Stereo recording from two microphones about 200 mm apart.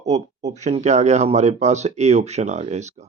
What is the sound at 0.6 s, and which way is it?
Speech, 35° right (ahead or behind).